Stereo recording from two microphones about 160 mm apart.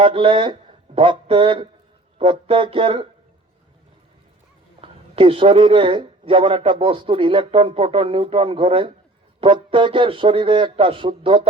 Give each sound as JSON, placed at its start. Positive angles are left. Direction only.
{"t": 0.0, "sound": "a man's voice", "side_deg": -35}
{"t": 4.8, "sound": "a man's voice", "side_deg": -35}